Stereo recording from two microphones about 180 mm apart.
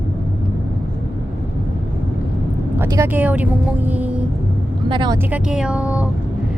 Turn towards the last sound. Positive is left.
turn(degrees=-5)  # may be behind; listen again after turning